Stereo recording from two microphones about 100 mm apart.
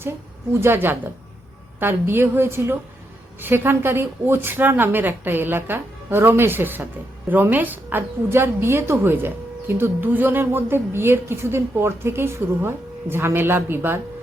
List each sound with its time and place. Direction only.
0.6 s a woman's voice: 20° right (ahead or behind)